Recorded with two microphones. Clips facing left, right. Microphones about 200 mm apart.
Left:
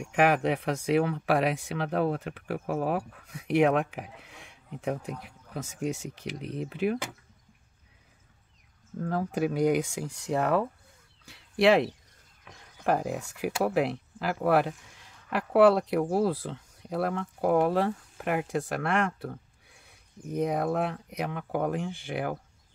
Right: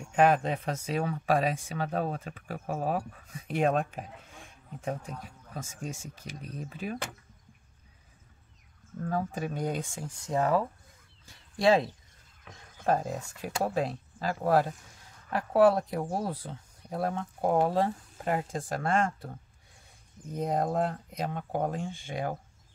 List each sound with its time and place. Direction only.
0.1 s speech: 80° left
9.1 s speech: 75° left (ahead or behind)